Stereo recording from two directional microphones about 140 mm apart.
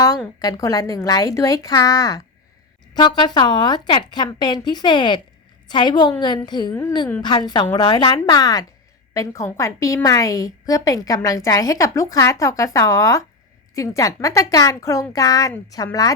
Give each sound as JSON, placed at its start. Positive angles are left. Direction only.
{"t": 0.3, "sound": "a woman's voice", "side_deg": 25}